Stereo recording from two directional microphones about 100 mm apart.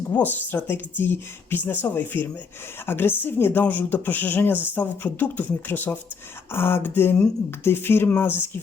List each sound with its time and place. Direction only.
0.1 s speech: 20° left (ahead or behind)